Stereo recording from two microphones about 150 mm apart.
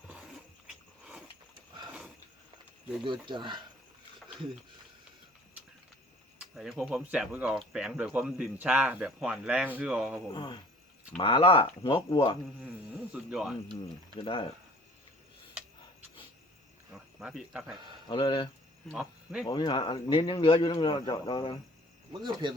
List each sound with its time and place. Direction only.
3.0 s speech: 30° right (ahead or behind)
6.6 s speech: 5° right (ahead or behind)
10.3 s speech: 30° left (ahead or behind)
13.1 s speech: 5° right (ahead or behind)
14.2 s speech: 35° left (ahead or behind)
17.2 s speech: 5° right (ahead or behind)
18.1 s speech: 30° left (ahead or behind)
18.9 s speech: 5° right (ahead or behind)
19.5 s speech: 30° left (ahead or behind)
22.2 s speech: 30° right (ahead or behind)